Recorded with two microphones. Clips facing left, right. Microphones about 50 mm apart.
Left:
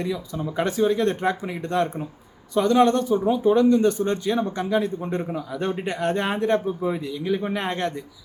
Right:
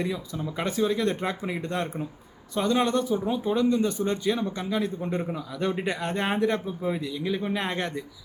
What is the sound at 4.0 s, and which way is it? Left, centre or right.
A man's voice, centre.